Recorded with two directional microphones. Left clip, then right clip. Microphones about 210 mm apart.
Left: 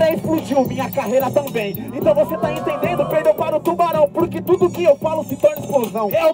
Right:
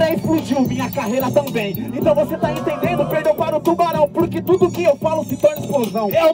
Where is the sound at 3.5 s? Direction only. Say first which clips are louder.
Even; 10° right (ahead or behind).